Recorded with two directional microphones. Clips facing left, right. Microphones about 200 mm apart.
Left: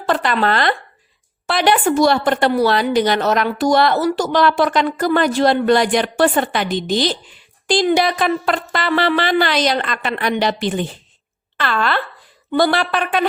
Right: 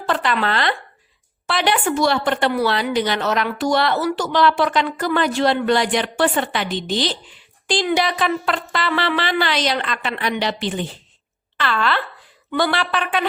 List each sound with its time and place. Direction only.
0.1 s a woman's voice: 40° left (ahead or behind)